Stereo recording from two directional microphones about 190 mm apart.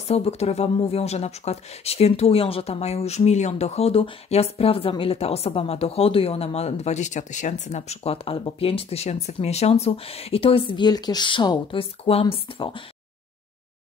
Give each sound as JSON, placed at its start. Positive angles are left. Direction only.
{"t": 0.1, "sound": "speech", "side_deg": 35}